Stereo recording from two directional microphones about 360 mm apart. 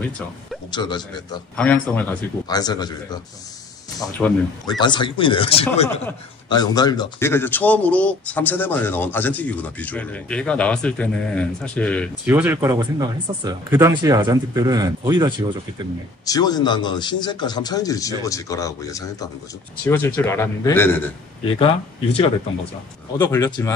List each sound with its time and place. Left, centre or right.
0.7 s a man's voice: centre
16.3 s a man's voice: centre
23.1 s speech: centre